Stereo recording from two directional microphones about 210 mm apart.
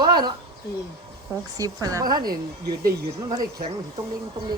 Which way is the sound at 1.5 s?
15° right (ahead or behind).